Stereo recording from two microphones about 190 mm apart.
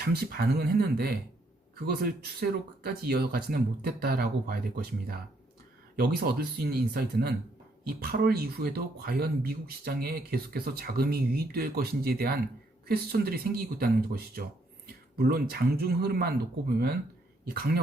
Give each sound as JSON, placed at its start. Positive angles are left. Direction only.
{"t": 0.0, "sound": "speech", "side_deg": -55}